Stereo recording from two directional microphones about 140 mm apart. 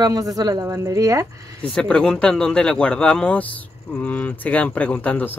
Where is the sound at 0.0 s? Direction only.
25° right (ahead or behind).